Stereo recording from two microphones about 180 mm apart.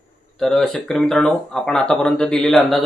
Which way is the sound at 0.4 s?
Centre (ahead or behind).